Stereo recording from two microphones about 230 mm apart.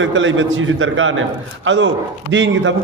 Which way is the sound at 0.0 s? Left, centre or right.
Right.